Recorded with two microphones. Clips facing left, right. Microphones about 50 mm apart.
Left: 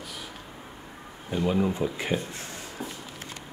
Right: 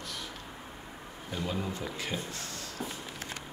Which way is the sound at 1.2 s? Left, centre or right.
Left.